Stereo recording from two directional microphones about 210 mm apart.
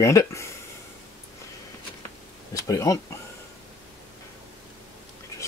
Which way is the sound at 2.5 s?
15° left (ahead or behind).